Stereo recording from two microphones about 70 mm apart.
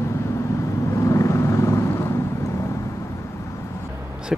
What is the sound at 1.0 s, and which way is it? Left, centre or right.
Vehicle, left.